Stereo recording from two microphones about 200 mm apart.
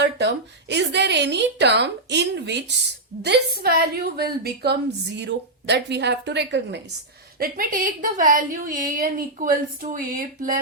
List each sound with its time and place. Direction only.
0.0 s a woman's voice: 60° right (ahead or behind)
7.3 s a woman's voice: 45° right (ahead or behind)